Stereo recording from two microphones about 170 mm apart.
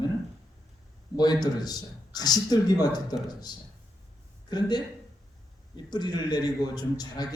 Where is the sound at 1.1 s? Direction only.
25° left (ahead or behind).